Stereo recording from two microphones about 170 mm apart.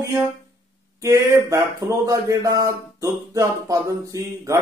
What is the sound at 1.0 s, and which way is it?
Speech, 20° right (ahead or behind).